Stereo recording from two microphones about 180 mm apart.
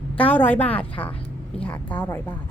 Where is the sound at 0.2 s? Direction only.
10° left (ahead or behind).